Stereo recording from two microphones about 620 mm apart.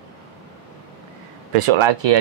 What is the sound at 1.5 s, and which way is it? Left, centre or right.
Speech, right.